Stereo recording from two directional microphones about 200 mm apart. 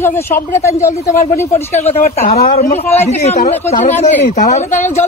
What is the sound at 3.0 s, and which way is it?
Speech, 35° left (ahead or behind).